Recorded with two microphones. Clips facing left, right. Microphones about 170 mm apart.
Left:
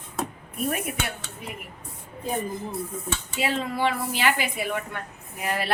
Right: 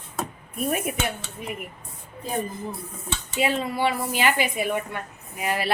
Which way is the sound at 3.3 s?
15° right (ahead or behind).